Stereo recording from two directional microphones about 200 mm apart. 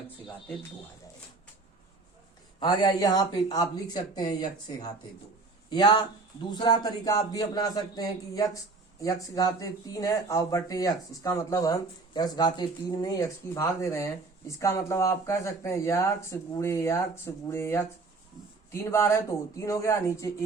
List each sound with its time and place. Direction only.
2.6 s speech: 20° left (ahead or behind)